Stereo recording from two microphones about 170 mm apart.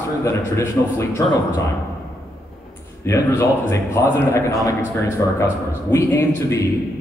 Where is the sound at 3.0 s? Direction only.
20° left (ahead or behind).